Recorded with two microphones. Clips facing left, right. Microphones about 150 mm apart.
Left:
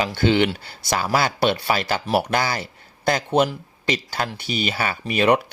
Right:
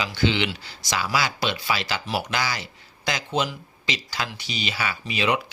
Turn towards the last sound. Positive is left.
turn(degrees=55)  # may be behind; listen again after turning